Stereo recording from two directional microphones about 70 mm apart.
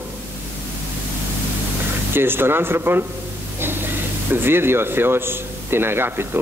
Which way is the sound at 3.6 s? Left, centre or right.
Right.